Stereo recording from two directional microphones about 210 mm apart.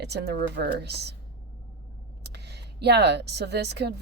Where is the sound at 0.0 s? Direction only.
50° right (ahead or behind).